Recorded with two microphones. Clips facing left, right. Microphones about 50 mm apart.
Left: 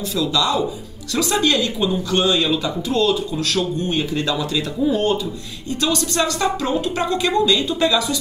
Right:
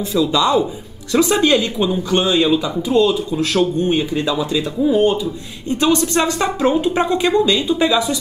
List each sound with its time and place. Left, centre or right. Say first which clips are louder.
0.1 s speech: right 5 dB; right
5.7 s speech: right 5 dB; right